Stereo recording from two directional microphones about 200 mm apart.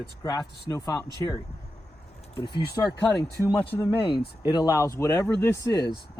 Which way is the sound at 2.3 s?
25° left (ahead or behind).